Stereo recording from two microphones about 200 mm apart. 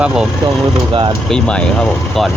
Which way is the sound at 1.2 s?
5° left (ahead or behind).